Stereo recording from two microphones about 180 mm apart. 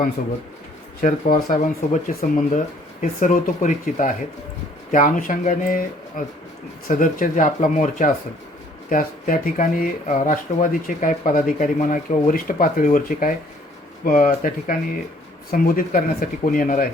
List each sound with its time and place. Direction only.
1.0 s speech: 45° left (ahead or behind)